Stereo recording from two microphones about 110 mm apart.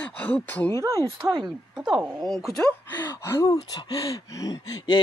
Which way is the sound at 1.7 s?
10° right (ahead or behind).